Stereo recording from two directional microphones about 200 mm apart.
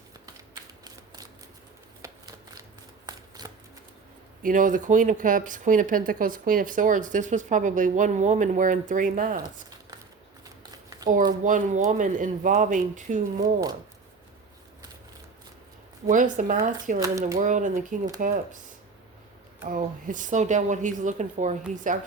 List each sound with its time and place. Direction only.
0.3 s typewriter: 20° right (ahead or behind)
2.0 s a sound: 20° right (ahead or behind)
3.1 s shuffling cards: 20° right (ahead or behind)
4.4 s speech: 40° right (ahead or behind)
10.6 s a sound: 20° right (ahead or behind)
11.3 s speech: 40° right (ahead or behind)
13.4 s speech: 20° right (ahead or behind)
16.0 s speech: 40° right (ahead or behind)
17.0 s speech: 15° right (ahead or behind)
17.3 s speech: 40° right (ahead or behind)
19.6 s speech: 40° right (ahead or behind)